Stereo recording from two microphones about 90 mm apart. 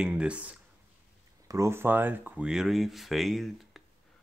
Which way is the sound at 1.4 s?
35° right (ahead or behind).